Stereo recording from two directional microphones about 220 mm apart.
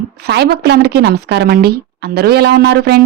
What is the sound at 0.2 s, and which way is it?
Speech, 45° right (ahead or behind).